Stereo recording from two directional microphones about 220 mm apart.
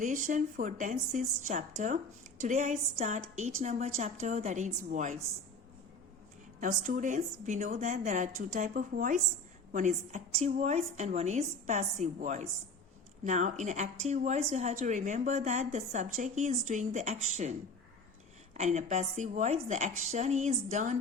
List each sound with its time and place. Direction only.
0.0 s a woman's voice: 35° right (ahead or behind)
6.6 s a woman's voice: 35° right (ahead or behind)